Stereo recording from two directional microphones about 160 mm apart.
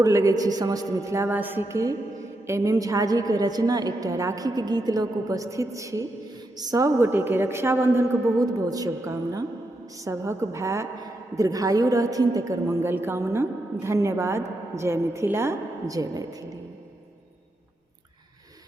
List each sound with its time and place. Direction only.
0.0 s a woman's voice: 20° right (ahead or behind)